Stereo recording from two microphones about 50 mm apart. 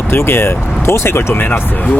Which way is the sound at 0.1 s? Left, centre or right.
Left.